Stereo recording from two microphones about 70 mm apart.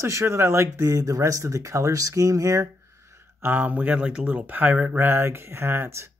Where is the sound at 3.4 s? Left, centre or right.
Right.